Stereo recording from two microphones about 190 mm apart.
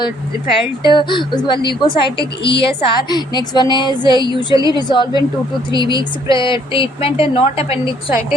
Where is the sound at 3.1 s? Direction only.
20° left (ahead or behind).